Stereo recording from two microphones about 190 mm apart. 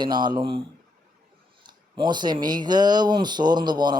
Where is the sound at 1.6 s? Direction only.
25° right (ahead or behind).